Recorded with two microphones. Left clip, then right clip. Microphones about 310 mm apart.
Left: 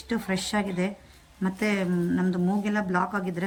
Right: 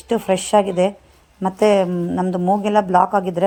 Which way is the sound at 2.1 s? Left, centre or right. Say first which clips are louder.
Right 8 dB; right.